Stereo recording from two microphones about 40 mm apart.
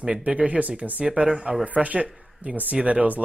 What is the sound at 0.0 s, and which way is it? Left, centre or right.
Speech, right.